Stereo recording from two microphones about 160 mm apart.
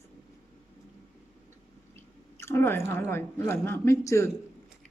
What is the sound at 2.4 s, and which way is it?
Speech, 15° left (ahead or behind).